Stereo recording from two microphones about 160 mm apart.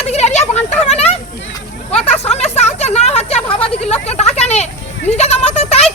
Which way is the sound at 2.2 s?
40° left (ahead or behind).